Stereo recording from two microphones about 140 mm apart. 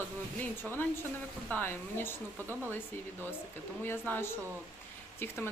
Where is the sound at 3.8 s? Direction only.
15° left (ahead or behind).